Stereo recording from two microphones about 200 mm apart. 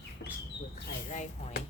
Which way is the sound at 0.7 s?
40° left (ahead or behind).